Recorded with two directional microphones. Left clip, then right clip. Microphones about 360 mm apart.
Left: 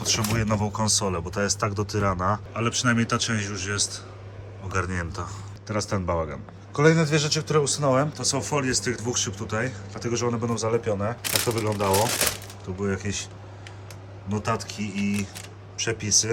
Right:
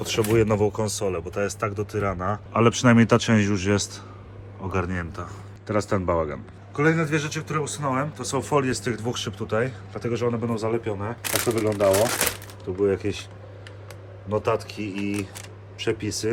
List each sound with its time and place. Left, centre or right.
0.0 s a man's voice: centre
2.5 s speech: centre
4.7 s a man's voice: centre
14.3 s a man's voice: centre